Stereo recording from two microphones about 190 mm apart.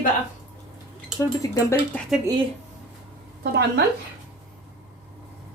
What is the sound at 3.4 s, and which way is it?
Speech, 60° right (ahead or behind).